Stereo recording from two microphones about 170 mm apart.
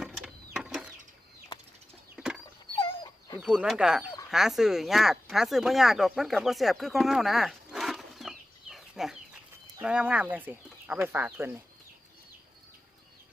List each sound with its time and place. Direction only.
0.5 s mechanisms: 5° right (ahead or behind)
2.1 s a sound: 5° right (ahead or behind)
2.7 s dog: 30° left (ahead or behind)
3.4 s speech: 5° right (ahead or behind)